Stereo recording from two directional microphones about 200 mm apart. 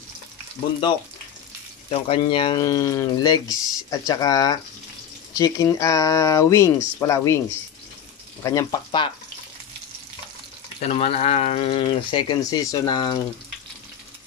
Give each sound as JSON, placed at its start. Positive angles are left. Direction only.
{"t": 1.9, "sound": "speech", "side_deg": 30}
{"t": 10.8, "sound": "speech", "side_deg": 35}